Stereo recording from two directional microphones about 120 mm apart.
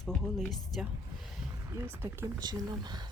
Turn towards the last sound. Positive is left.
turn(degrees=-35)  # may be behind; listen again after turning